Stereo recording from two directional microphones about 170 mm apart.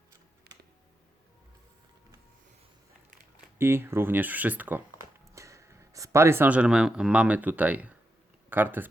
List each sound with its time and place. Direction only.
0.5 s computer keyboard: 70° right (ahead or behind)
3.6 s speech: 15° right (ahead or behind)